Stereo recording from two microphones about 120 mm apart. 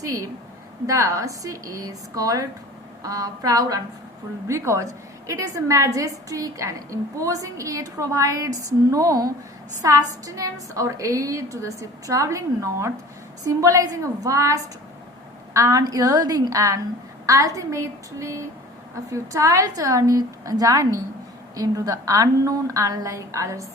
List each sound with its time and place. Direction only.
0.0 s a woman's voice: 30° right (ahead or behind)